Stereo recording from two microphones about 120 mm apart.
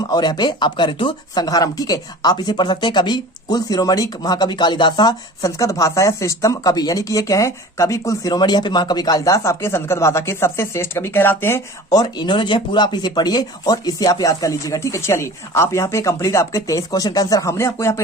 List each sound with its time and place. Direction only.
0.1 s speech: 35° left (ahead or behind); by 11.6 s 20° left (ahead or behind)
11.9 s speech: 35° left (ahead or behind)